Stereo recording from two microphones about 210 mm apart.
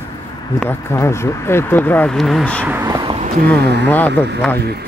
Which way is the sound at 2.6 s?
10° right (ahead or behind).